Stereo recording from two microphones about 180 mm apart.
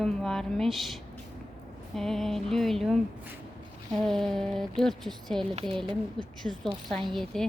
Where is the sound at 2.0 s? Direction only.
Centre (ahead or behind).